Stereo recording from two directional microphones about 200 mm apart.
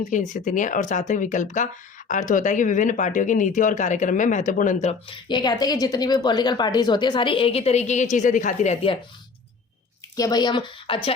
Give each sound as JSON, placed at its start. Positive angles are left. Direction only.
{"t": 0.1, "sound": "speech", "side_deg": 40}
{"t": 10.2, "sound": "speech", "side_deg": 20}